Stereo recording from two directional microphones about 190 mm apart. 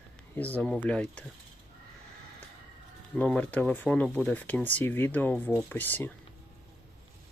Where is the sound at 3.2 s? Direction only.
10° left (ahead or behind).